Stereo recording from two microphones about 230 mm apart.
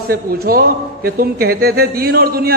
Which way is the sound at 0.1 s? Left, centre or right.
Right.